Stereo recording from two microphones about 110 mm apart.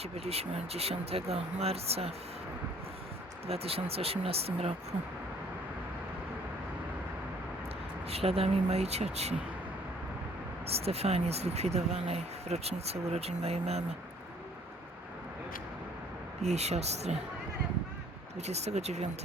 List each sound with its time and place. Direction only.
0.0 s speech: 70° right (ahead or behind)
3.4 s speech: 65° right (ahead or behind)
8.1 s speech: 60° right (ahead or behind)
10.8 s speech: 70° right (ahead or behind)
16.4 s speech: 80° right
18.3 s speech: 80° right